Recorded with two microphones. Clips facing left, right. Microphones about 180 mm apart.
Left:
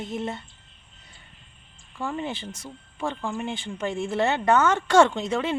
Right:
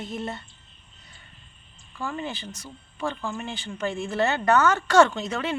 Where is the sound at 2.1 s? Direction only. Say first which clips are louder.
Left 2 dB; 25° left (ahead or behind).